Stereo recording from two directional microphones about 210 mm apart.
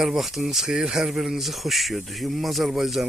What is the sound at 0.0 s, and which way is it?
Speech, centre (ahead or behind).